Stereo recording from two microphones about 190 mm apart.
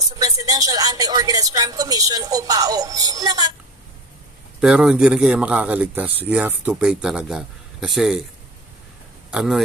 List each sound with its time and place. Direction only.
0.2 s a woman's voice: 20° right (ahead or behind)
4.6 s speech: 5° right (ahead or behind)
9.3 s speech: 5° right (ahead or behind)